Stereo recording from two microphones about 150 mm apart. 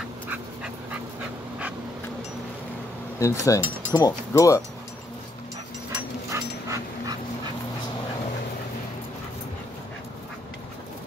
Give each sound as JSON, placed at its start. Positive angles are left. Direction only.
{"t": 3.2, "sound": "speech", "side_deg": 20}
{"t": 6.3, "sound": "dog", "side_deg": -20}